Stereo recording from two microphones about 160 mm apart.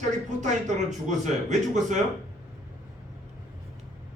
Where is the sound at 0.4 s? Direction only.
50° right (ahead or behind).